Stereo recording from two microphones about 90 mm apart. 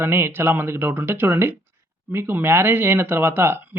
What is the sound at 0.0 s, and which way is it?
Speech, 25° right (ahead or behind).